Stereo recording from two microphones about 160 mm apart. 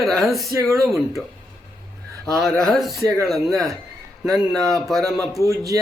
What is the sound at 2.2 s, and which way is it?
A man's voice, centre (ahead or behind).